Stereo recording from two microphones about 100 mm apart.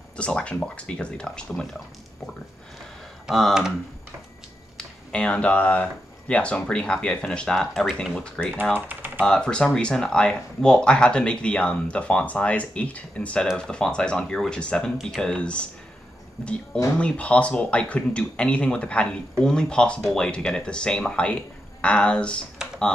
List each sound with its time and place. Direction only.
0.2 s speech: 10° left (ahead or behind)
3.3 s speech: centre (ahead or behind)
4.7 s speech: 10° left (ahead or behind)
8.7 s speech: 20° right (ahead or behind)
9.2 s speech: 10° left (ahead or behind)